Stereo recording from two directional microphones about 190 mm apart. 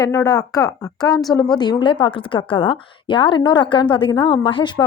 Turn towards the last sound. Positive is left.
turn(degrees=25)  # may be behind; listen again after turning